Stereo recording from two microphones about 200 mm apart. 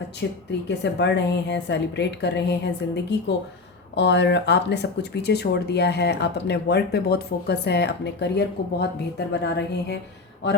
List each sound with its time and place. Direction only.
0.2 s speech: 55° left (ahead or behind)